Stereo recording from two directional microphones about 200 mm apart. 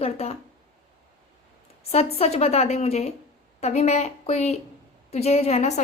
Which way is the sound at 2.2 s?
30° left (ahead or behind).